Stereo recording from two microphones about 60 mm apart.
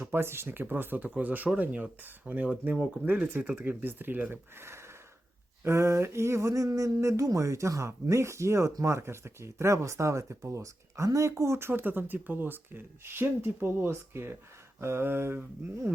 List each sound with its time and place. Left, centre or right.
0.1 s speech: right
2.7 s speech: centre
3.1 s speech: right
4.3 s speech: right
5.6 s a sound: right
8.8 s speech: right
11.7 s speech: right